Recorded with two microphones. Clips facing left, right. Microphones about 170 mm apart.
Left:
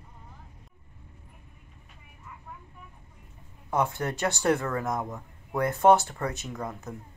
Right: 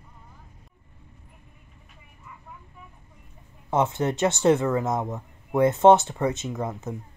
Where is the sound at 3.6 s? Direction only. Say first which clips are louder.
Right 4 dB; 25° right (ahead or behind).